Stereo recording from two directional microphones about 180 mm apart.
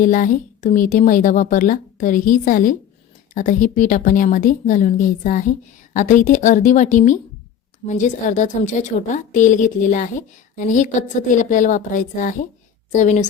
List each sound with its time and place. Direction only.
0.0 s a woman's voice: 50° left (ahead or behind)